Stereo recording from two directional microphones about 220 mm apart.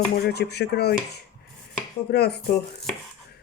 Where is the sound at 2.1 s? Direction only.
50° left (ahead or behind).